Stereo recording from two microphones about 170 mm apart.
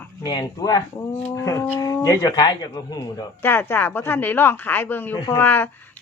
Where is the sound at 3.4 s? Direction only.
10° left (ahead or behind).